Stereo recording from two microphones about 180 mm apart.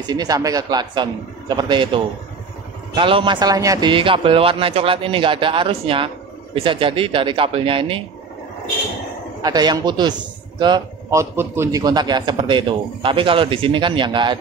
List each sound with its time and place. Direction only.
0.0 s a man's voice: 20° right (ahead or behind)
9.4 s a man's voice: 20° right (ahead or behind)